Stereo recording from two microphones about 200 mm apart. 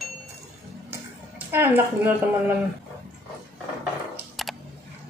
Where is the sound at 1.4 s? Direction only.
10° right (ahead or behind).